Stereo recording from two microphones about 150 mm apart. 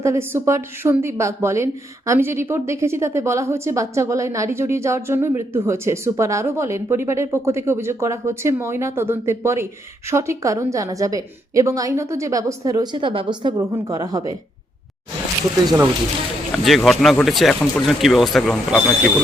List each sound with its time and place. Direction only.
0.0 s a woman's voice: 20° right (ahead or behind)
16.6 s speech: centre (ahead or behind)